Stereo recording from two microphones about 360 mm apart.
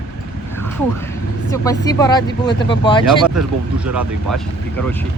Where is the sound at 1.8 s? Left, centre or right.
Centre.